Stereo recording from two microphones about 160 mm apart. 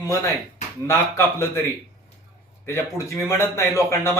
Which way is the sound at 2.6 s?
15° left (ahead or behind).